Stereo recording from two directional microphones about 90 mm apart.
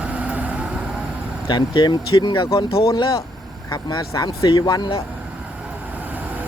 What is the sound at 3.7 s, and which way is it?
Speech, 40° left (ahead or behind).